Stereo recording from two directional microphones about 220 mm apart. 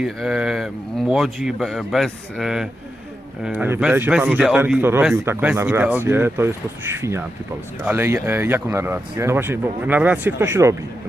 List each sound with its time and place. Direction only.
0.0 s speech: centre (ahead or behind)